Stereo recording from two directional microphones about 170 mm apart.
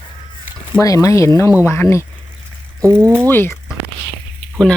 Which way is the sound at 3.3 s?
10° left (ahead or behind).